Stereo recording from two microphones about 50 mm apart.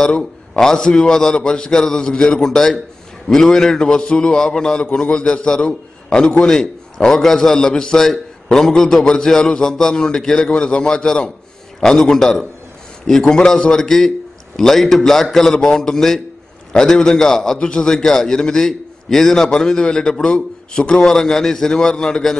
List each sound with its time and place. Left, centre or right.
0.0 s a man's voice: centre